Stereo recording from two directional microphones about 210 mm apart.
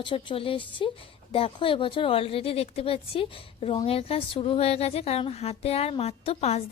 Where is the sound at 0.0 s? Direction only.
25° left (ahead or behind).